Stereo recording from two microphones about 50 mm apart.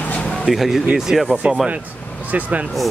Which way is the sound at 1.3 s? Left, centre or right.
Right.